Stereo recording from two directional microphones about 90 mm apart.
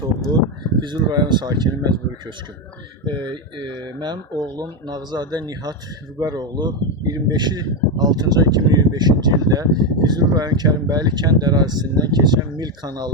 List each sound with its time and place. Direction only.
0.3 s speech: 55° right (ahead or behind)
3.6 s speech: 55° right (ahead or behind)